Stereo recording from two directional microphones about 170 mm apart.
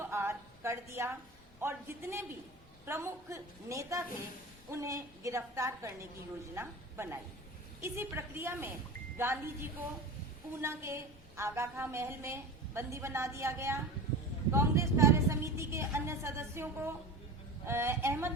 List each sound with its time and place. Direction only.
0.0 s a woman's voice: 15° right (ahead or behind)